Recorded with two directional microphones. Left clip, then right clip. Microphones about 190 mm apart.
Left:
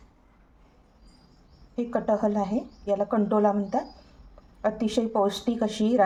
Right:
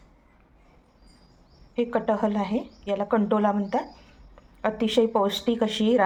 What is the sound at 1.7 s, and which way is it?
Speech, 10° right (ahead or behind).